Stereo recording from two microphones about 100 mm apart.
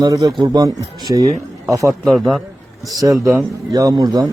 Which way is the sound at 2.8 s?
35° right (ahead or behind).